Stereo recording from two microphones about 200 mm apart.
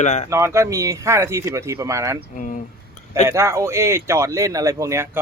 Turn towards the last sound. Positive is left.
turn(degrees=-10)  # may be behind; listen again after turning